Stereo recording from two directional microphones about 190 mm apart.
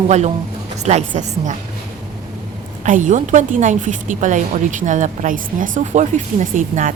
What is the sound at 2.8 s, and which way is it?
A woman's voice, 40° right (ahead or behind).